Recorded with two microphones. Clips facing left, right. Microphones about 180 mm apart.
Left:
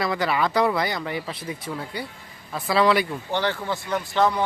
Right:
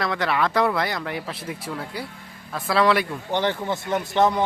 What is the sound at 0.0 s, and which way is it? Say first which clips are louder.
Speech: even; centre (ahead or behind).